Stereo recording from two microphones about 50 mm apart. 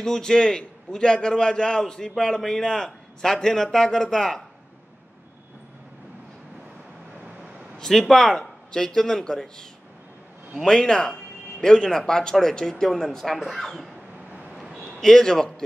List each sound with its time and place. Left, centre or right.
0.0 s a man's voice: centre
8.1 s a man's voice: centre
14.9 s a man's voice: centre